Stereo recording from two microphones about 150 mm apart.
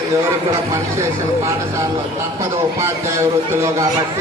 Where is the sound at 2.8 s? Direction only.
20° right (ahead or behind).